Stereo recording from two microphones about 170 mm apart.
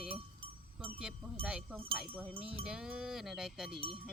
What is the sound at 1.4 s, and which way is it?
Speech, 5° right (ahead or behind).